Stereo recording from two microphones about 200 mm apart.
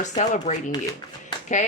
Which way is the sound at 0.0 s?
35° left (ahead or behind).